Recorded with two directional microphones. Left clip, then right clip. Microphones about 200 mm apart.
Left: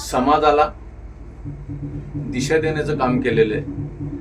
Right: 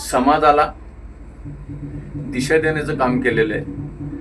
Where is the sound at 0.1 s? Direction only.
10° left (ahead or behind).